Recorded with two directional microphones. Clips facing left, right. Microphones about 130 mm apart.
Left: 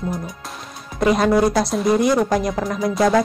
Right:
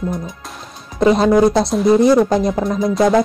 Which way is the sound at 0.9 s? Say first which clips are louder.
Right 4 dB; 25° right (ahead or behind).